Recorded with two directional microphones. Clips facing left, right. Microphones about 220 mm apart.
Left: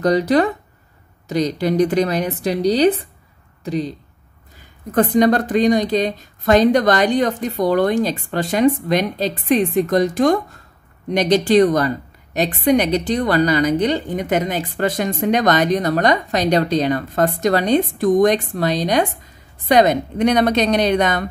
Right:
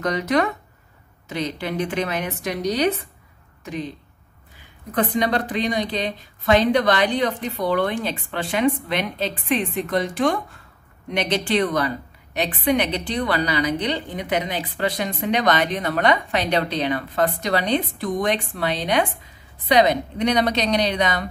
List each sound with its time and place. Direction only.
0.0 s a woman's voice: 35° left (ahead or behind)
4.9 s a woman's voice: 45° left (ahead or behind)